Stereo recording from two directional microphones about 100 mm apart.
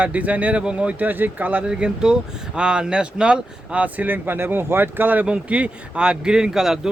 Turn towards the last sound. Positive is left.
turn(degrees=-5)  # may be behind; listen again after turning